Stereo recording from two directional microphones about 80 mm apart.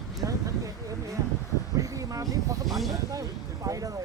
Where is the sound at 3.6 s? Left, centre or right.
Right.